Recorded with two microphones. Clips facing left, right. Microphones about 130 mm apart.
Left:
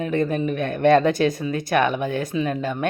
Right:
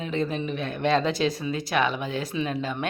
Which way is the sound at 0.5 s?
50° left (ahead or behind).